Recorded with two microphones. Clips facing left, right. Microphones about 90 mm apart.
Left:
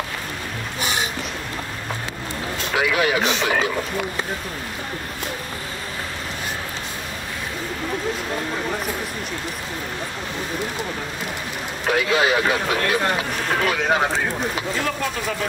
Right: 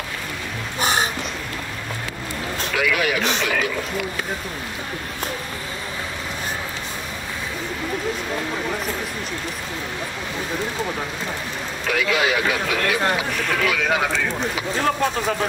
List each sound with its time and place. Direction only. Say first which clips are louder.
0.7 s a sound: right 5 dB; 35° right (ahead or behind)
2.7 s speech: left 2 dB; 30° left (ahead or behind)
11.9 s speech: left 2 dB; 30° left (ahead or behind)